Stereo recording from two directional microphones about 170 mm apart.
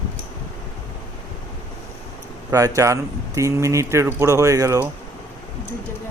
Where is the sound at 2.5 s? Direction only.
20° right (ahead or behind).